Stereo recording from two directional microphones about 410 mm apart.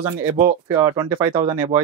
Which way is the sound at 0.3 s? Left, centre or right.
Centre.